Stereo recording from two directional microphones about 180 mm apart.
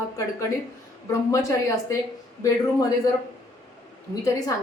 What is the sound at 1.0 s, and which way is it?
A woman's voice, 15° left (ahead or behind).